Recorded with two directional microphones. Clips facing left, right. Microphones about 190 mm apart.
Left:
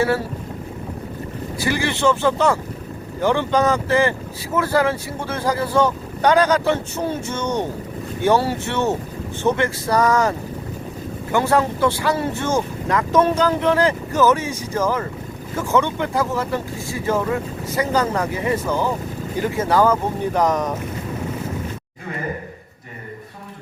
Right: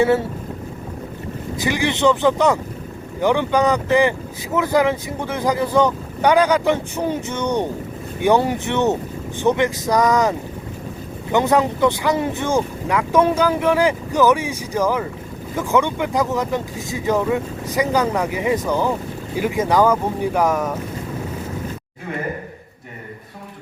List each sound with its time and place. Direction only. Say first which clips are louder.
0.0 s speech: right 3 dB; 20° right (ahead or behind)
1.5 s speech: right 1 dB; 20° right (ahead or behind)